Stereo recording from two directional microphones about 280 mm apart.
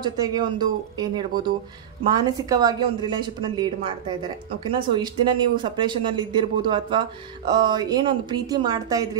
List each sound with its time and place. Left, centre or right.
0.0 s speech: centre